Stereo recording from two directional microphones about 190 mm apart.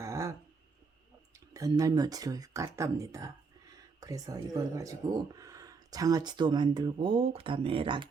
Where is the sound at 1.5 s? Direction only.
20° right (ahead or behind).